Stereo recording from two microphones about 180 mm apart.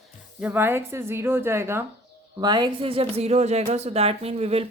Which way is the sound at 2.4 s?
25° right (ahead or behind).